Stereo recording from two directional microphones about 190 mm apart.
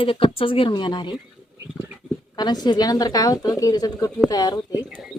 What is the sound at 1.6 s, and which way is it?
Dog, 10° right (ahead or behind).